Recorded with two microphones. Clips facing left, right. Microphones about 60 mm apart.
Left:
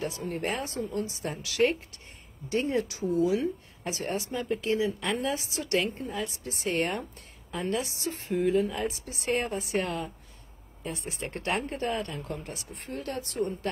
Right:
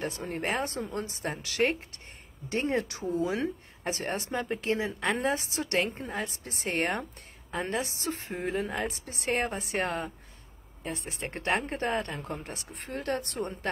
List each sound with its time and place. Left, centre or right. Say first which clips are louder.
0.0 s a woman's voice: left 1 dB; right
12.9 s speech: right 2 dB; right